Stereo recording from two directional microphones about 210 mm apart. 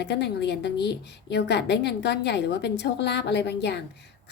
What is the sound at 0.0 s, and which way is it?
A woman's voice, 55° left (ahead or behind).